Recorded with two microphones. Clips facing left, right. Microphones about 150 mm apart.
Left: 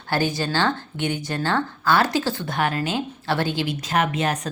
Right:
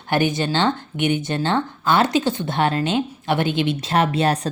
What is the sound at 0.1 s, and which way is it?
Speech, 20° right (ahead or behind).